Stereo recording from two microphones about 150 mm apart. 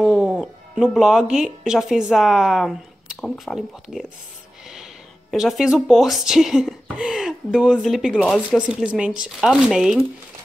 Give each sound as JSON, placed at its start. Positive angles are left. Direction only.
{"t": 0.0, "sound": "speech", "side_deg": -5}
{"t": 5.3, "sound": "speech", "side_deg": 0}